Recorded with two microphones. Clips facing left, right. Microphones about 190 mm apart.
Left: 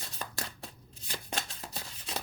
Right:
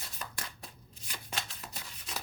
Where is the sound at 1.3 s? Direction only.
35° left (ahead or behind).